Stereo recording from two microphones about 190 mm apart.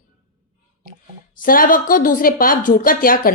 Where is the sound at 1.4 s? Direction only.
45° left (ahead or behind).